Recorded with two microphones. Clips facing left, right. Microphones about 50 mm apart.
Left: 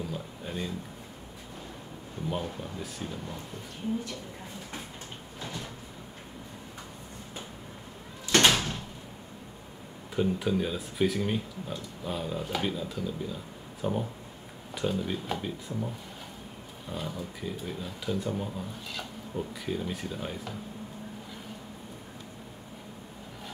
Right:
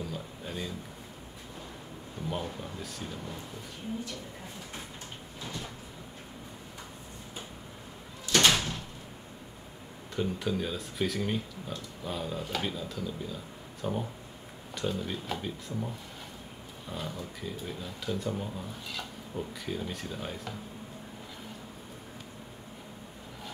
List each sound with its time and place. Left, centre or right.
0.1 s a sound: centre
2.2 s speech: centre
8.5 s door: centre
10.1 s speech: centre
16.9 s speech: centre